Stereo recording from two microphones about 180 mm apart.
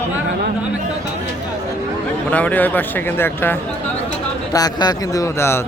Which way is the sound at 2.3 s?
10° left (ahead or behind).